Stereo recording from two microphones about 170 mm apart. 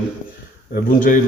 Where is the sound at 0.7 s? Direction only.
55° left (ahead or behind).